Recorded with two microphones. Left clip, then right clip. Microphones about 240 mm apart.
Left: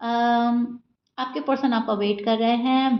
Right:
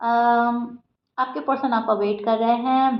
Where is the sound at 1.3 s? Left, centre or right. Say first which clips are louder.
Left 2 dB; left.